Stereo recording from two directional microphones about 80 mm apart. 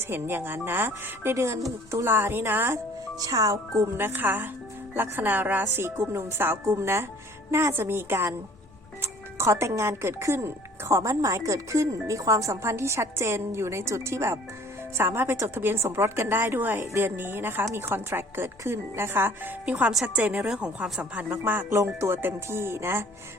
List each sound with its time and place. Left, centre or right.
0.0 s a woman's voice: right
3.2 s speech: right
3.9 s a woman's voice: right
20.4 s a woman's voice: centre
21.7 s speech: right